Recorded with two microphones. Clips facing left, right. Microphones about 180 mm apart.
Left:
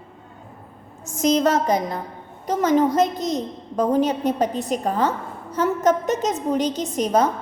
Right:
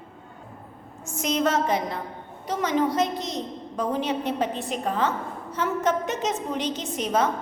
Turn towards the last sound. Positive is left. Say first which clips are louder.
# left 5 dB
turn(degrees=40)  # may be behind; listen again after turning